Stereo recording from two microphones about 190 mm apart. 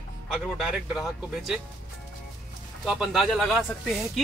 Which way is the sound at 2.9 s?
Centre (ahead or behind).